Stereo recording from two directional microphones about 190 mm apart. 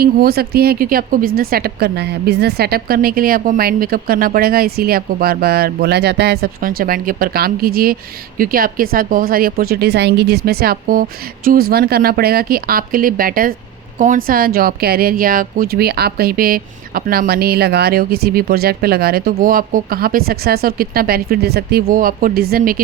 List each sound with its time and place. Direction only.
0.0 s speech: 55° right (ahead or behind)